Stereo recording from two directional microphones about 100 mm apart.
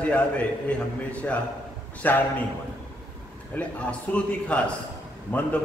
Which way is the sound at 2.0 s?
15° left (ahead or behind).